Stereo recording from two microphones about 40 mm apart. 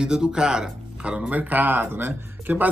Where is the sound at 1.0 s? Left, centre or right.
Right.